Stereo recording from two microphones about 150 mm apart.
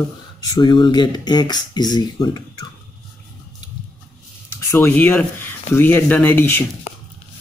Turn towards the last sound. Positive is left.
turn(degrees=45)  # may be behind; listen again after turning